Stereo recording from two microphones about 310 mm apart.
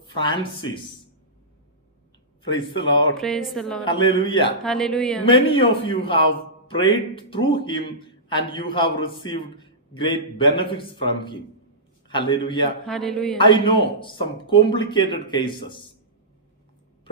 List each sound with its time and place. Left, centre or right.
0.1 s a man's voice: centre
2.6 s a man's voice: centre
3.2 s speech: centre
3.8 s a man's voice: centre
4.6 s speech: centre
5.2 s a man's voice: centre
12.9 s speech: centre
13.4 s a man's voice: centre